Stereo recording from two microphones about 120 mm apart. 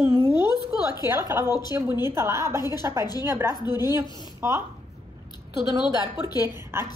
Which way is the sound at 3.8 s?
20° right (ahead or behind).